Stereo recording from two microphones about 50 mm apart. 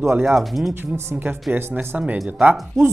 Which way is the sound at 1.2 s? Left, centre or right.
Right.